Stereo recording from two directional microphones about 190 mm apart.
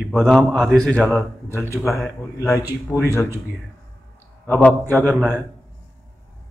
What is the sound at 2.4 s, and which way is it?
Speech, 15° left (ahead or behind).